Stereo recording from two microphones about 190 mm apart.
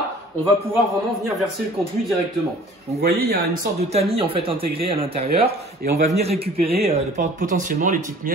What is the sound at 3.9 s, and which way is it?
Speech, 30° right (ahead or behind).